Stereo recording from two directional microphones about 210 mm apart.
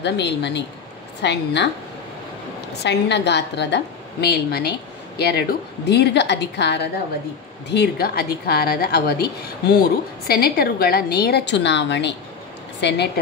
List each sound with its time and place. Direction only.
0.0 s speech: 55° left (ahead or behind)
2.8 s a woman's voice: 55° left (ahead or behind)